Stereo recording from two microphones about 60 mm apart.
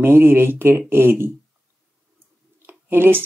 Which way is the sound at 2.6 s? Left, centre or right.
Right.